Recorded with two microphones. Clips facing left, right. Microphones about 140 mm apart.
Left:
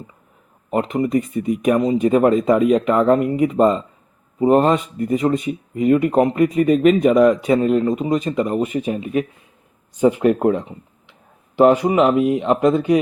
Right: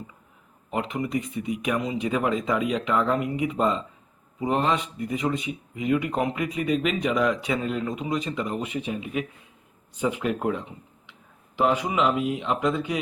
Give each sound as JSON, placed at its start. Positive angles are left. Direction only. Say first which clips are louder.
{"t": 0.7, "sound": "speech", "louder": "left 9 dB", "side_deg": 45}